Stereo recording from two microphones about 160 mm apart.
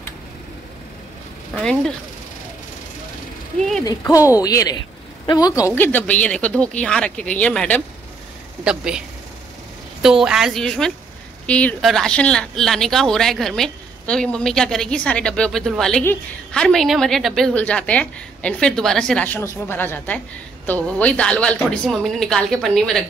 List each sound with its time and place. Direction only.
1.5 s speech: 5° left (ahead or behind)
3.8 s a man's voice: 20° left (ahead or behind)
5.8 s speech: 10° left (ahead or behind)
8.6 s speech: 5° right (ahead or behind)
10.0 s speech: 5° right (ahead or behind)